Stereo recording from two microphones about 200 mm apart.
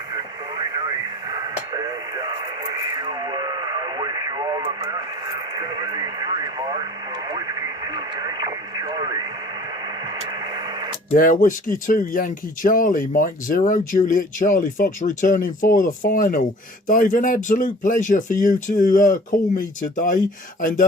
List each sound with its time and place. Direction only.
0.6 s radio: 20° right (ahead or behind)
11.1 s speech: 40° left (ahead or behind)
20.6 s a sound: 45° left (ahead or behind)